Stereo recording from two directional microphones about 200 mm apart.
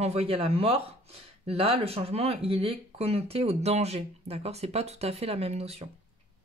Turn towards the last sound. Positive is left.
turn(degrees=-30)  # may be behind; listen again after turning